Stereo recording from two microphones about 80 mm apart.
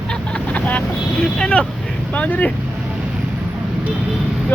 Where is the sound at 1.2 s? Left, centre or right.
Centre.